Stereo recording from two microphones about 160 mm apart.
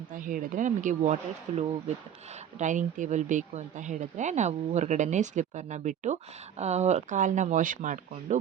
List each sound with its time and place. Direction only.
0.1 s speech: 60° right (ahead or behind)